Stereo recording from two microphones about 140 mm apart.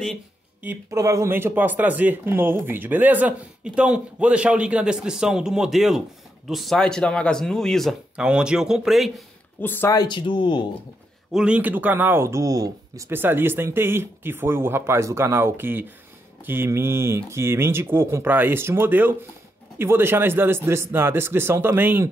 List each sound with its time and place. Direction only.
0.7 s speech: 20° right (ahead or behind); by 9.1 s centre (ahead or behind)
9.6 s speech: 15° left (ahead or behind)
9.9 s speech: 35° left (ahead or behind)
11.3 s speech: 10° right (ahead or behind)